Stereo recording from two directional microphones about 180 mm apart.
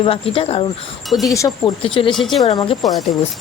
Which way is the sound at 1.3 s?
20° left (ahead or behind).